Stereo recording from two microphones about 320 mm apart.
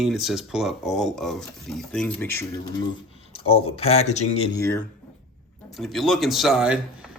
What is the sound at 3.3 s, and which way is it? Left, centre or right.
Speech, centre.